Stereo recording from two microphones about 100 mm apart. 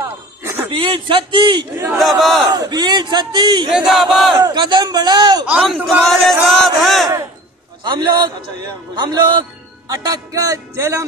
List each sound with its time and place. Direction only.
0.0 s a sound: 25° right (ahead or behind)
0.7 s a man's voice: 55° right (ahead or behind)
2.0 s chant: centre (ahead or behind)
2.5 s speech: 45° right (ahead or behind)
3.7 s chant: centre (ahead or behind)
4.4 s speech: 45° right (ahead or behind)
5.9 s chant: centre (ahead or behind)
7.8 s a man's voice: 50° right (ahead or behind); by 11.1 s 30° right (ahead or behind)